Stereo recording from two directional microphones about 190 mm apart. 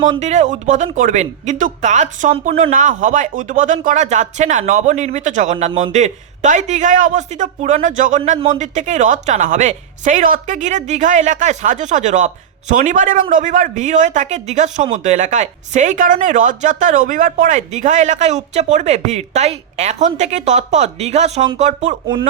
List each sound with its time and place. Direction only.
0.1 s speech: 35° right (ahead or behind)